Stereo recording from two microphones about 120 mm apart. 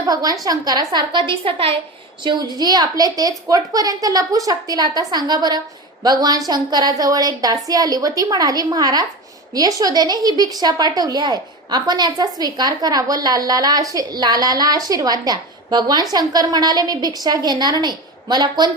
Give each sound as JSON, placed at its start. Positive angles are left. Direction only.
{"t": 0.1, "sound": "a woman's voice", "side_deg": -30}
{"t": 2.2, "sound": "a woman's voice", "side_deg": -35}